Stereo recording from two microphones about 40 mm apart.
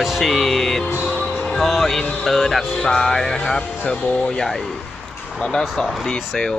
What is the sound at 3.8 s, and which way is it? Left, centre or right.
Speech, left.